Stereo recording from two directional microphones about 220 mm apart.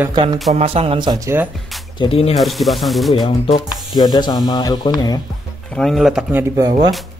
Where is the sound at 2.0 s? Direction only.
25° left (ahead or behind).